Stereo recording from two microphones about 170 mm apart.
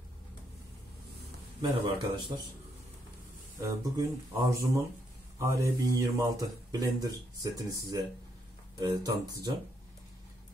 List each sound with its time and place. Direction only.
1.6 s speech: 25° right (ahead or behind)
3.5 s speech: 20° right (ahead or behind)